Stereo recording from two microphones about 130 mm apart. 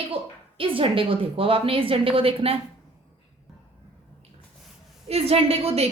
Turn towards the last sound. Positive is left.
turn(degrees=-50)  # may be behind; listen again after turning